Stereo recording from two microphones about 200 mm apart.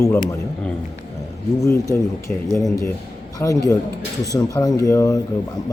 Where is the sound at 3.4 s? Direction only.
15° left (ahead or behind).